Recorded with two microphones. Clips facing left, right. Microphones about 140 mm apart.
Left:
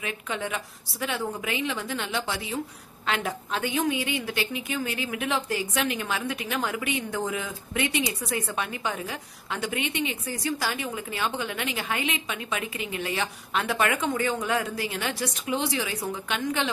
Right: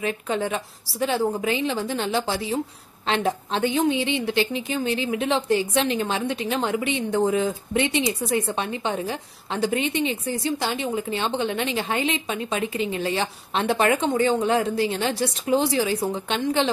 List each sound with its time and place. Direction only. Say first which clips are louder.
0.0 s a woman's voice: right 7 dB; 35° right (ahead or behind)